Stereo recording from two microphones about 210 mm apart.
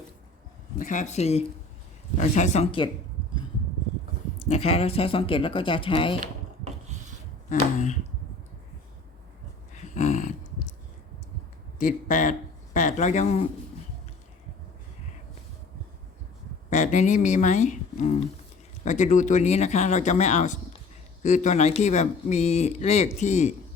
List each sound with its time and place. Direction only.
0.8 s speech: 35° left (ahead or behind)
4.4 s speech: 30° left (ahead or behind)
9.7 s a sound: 35° left (ahead or behind)
11.8 s speech: 40° left (ahead or behind)
16.6 s speech: 35° left (ahead or behind)